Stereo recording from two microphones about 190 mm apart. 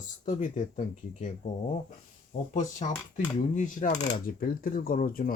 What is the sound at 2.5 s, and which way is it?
Speech, 40° left (ahead or behind).